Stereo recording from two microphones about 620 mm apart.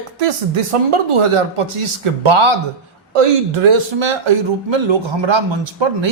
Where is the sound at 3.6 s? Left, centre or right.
Right.